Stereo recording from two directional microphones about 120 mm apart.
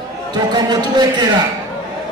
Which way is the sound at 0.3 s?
35° right (ahead or behind).